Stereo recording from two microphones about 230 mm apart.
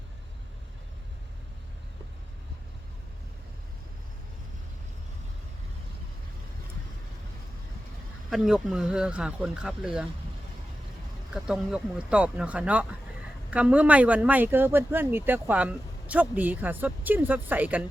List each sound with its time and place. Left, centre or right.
8.3 s speech: centre
11.4 s speech: centre